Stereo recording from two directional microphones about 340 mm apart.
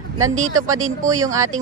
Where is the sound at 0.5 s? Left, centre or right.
Right.